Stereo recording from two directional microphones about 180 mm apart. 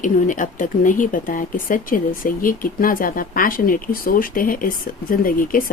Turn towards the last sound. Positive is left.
turn(degrees=50)  # may be behind; listen again after turning